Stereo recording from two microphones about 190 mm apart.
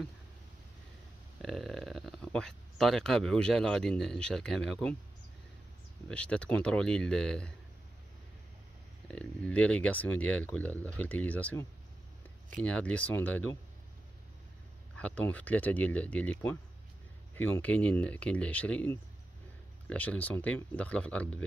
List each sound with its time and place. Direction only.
1.4 s speech: centre (ahead or behind)
6.0 s speech: 5° left (ahead or behind)
9.1 s speech: 5° left (ahead or behind)
15.0 s speech: 5° left (ahead or behind)